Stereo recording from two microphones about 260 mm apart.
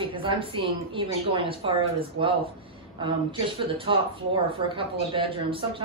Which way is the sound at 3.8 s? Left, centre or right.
Right.